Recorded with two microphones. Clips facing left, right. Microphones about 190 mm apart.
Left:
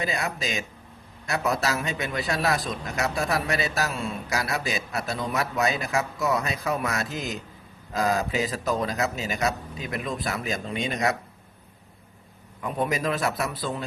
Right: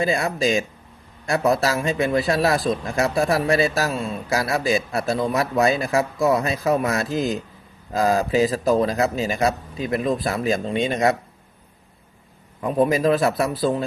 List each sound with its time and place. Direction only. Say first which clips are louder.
0.2 s a man's voice: right 9 dB; 35° right (ahead or behind)
12.6 s a man's voice: right 8 dB; 30° right (ahead or behind)